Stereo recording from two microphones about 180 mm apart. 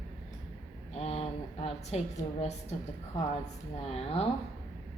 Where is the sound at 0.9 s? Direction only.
35° left (ahead or behind).